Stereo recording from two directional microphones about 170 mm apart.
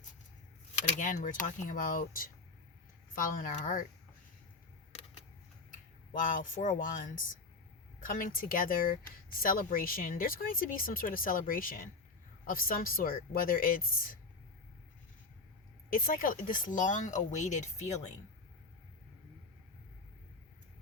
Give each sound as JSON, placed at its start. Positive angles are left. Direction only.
{"t": 0.9, "sound": "speech", "side_deg": 50}
{"t": 6.1, "sound": "speech", "side_deg": 50}
{"t": 15.9, "sound": "speech", "side_deg": 55}